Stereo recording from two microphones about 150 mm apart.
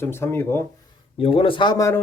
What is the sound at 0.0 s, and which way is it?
Speech, 15° left (ahead or behind).